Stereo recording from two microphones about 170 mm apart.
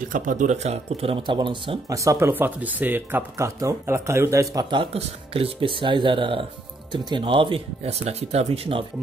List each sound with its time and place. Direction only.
0.1 s speech: 50° right (ahead or behind)